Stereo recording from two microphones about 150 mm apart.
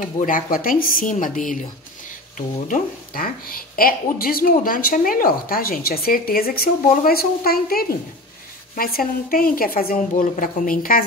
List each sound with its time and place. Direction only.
0.2 s speech: 65° left (ahead or behind)
3.7 s speech: 75° left (ahead or behind)